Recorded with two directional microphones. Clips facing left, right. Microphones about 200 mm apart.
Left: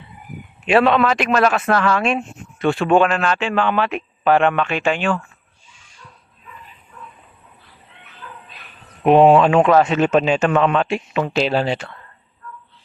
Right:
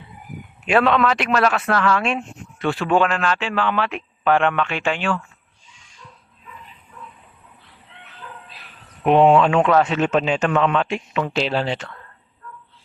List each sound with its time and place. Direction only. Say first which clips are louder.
0.7 s a man's voice: left 3 dB; 5° left (ahead or behind)
1.0 s speech: left 2 dB; 15° left (ahead or behind)
9.0 s speech: left 3 dB; 5° left (ahead or behind)
10.5 s a man's voice: left 2 dB; 40° left (ahead or behind)
11.3 s speech: left 4 dB; 15° left (ahead or behind)